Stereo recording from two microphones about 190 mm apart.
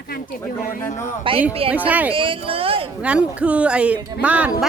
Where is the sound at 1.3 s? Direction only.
25° right (ahead or behind).